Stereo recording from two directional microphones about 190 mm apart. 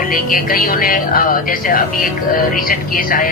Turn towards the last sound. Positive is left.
turn(degrees=50)  # may be behind; listen again after turning